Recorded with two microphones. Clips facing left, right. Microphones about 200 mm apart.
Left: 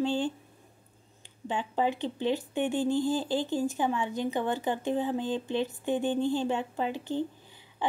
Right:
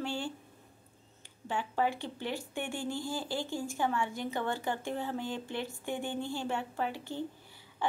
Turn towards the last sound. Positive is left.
turn(degrees=20)  # may be behind; listen again after turning